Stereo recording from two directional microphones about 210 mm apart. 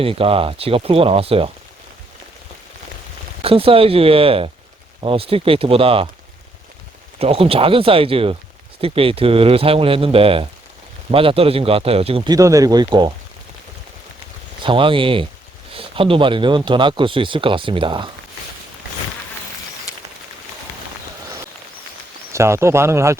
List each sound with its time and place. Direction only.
0.0 s speech: 25° right (ahead or behind)
3.4 s speech: 25° right (ahead or behind)
7.2 s speech: 30° right (ahead or behind)
14.6 s speech: 25° right (ahead or behind)
22.3 s speech: 15° right (ahead or behind)